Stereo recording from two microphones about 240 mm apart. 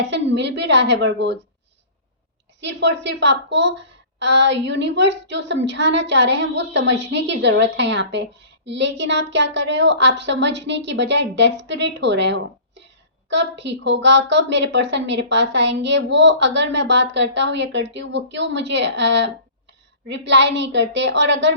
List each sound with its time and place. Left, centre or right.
0.0 s a woman's voice: right
2.6 s a woman's voice: right